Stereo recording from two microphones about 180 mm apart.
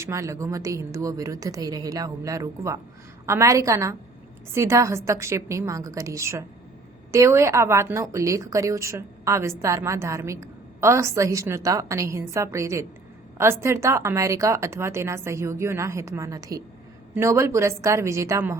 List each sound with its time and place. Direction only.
0.0 s a woman's voice: 15° right (ahead or behind)